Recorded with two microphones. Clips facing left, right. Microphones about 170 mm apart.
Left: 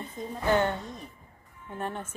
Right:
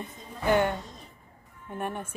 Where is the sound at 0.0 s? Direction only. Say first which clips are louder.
Even; 15° right (ahead or behind).